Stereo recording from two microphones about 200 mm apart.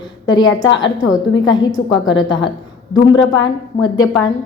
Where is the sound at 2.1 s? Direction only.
20° left (ahead or behind).